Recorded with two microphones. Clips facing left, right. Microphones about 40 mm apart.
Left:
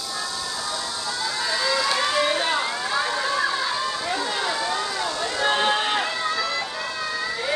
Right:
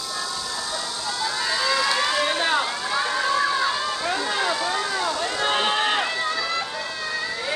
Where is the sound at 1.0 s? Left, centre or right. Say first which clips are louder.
Right 2 dB; right.